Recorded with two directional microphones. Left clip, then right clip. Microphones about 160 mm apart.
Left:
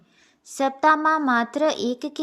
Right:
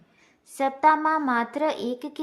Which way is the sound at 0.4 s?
25° left (ahead or behind).